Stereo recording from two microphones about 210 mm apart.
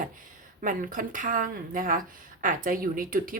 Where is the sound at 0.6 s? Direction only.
40° right (ahead or behind).